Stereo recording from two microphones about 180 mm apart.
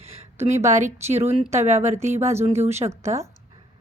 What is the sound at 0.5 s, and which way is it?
Speech, 15° right (ahead or behind).